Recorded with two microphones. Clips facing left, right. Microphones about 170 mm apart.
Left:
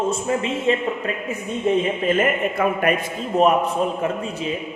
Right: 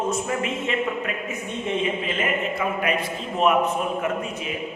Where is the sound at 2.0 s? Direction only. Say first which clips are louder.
Left 6 dB; 50° left (ahead or behind); by 4.5 s 30° left (ahead or behind).